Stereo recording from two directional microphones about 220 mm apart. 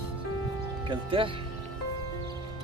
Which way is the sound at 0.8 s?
25° right (ahead or behind).